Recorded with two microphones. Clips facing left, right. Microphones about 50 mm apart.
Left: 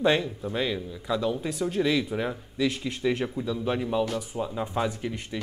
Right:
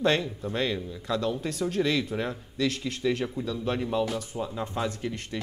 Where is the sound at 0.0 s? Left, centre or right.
Centre.